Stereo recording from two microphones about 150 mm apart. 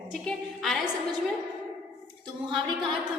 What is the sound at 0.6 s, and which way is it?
Speech, centre (ahead or behind).